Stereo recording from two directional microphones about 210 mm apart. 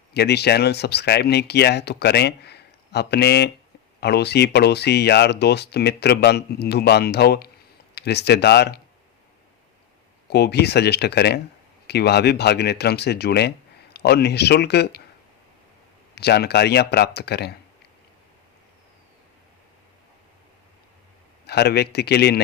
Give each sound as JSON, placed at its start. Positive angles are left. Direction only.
{"t": 0.1, "sound": "speech", "side_deg": 50}
{"t": 10.2, "sound": "speech", "side_deg": 50}
{"t": 16.1, "sound": "speech", "side_deg": 50}
{"t": 21.4, "sound": "speech", "side_deg": 50}